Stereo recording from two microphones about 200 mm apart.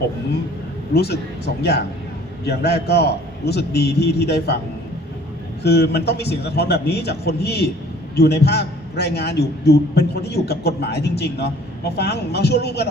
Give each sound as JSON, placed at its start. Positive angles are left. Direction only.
{"t": 0.9, "sound": "speech", "side_deg": 55}
{"t": 2.5, "sound": "a man's voice", "side_deg": 55}
{"t": 5.6, "sound": "a man's voice", "side_deg": 55}